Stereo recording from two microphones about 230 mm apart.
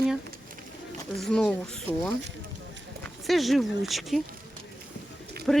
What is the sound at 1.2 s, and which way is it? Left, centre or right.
Speech, centre.